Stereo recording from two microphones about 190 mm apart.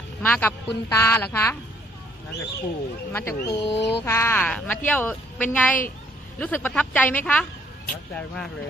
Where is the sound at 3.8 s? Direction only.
65° left (ahead or behind).